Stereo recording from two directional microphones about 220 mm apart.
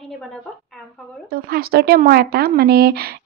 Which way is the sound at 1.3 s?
45° right (ahead or behind).